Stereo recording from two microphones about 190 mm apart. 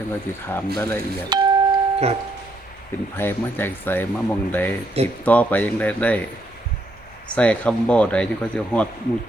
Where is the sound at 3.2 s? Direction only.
10° left (ahead or behind).